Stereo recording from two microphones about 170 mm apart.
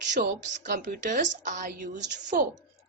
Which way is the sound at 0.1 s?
50° right (ahead or behind).